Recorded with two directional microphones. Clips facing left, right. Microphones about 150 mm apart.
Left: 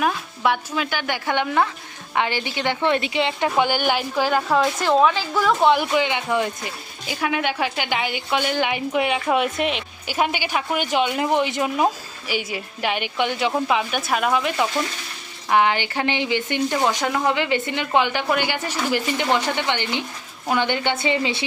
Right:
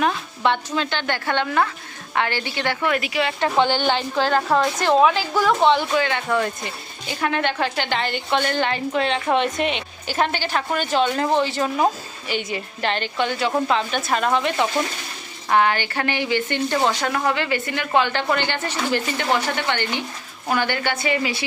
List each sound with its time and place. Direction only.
0.0 s a woman's voice: 5° left (ahead or behind); by 3.3 s 25° left (ahead or behind)
3.6 s a woman's voice: 10° left (ahead or behind)
5.7 s speech: 15° left (ahead or behind)
15.5 s a woman's voice: 15° left (ahead or behind)